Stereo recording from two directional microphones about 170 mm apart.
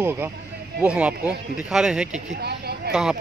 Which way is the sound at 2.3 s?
75° right (ahead or behind).